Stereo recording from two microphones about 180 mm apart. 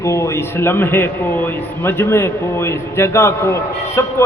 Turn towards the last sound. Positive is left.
turn(degrees=15)  # may be behind; listen again after turning